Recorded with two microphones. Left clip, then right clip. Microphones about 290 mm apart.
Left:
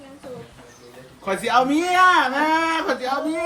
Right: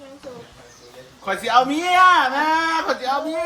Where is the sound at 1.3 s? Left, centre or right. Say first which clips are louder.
Right 1 dB; centre.